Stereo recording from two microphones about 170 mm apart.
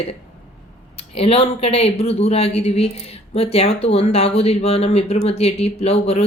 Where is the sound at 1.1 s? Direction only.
35° left (ahead or behind).